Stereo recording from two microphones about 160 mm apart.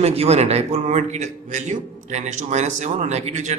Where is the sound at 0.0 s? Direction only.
40° right (ahead or behind).